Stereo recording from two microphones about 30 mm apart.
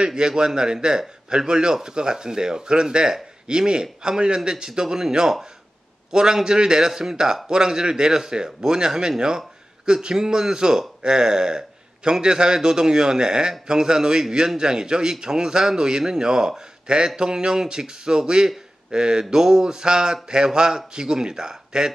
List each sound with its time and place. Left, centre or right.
0.0 s a man's voice: right
10.1 s a man's voice: centre